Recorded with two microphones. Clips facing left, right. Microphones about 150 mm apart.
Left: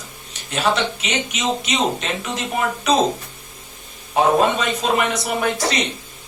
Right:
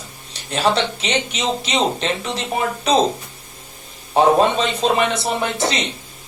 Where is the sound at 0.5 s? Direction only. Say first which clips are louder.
Right 2 dB; 35° right (ahead or behind).